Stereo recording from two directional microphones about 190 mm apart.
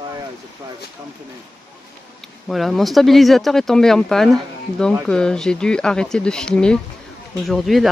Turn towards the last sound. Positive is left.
turn(degrees=0)  # may be behind; listen again after turning